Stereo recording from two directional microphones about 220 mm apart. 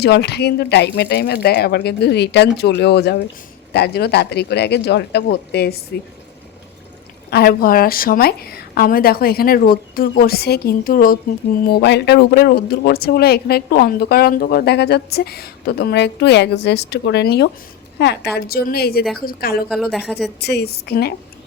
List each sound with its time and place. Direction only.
0.0 s speech: 50° left (ahead or behind)
7.3 s speech: 45° left (ahead or behind)
19.6 s a woman's voice: centre (ahead or behind)
20.4 s speech: 45° left (ahead or behind)